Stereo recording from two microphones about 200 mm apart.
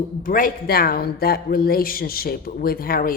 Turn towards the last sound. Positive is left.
turn(degrees=45)  # may be behind; listen again after turning